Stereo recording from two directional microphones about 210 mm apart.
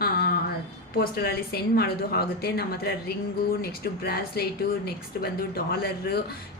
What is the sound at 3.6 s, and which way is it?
A woman's voice, 45° left (ahead or behind).